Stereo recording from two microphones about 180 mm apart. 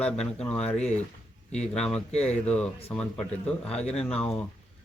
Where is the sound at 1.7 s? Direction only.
5° left (ahead or behind).